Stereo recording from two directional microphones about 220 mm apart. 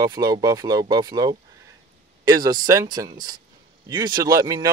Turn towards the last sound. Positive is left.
turn(degrees=-15)  # may be behind; listen again after turning